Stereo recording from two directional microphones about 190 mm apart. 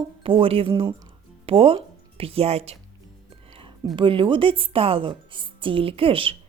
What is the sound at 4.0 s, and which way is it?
A woman's voice, 25° right (ahead or behind).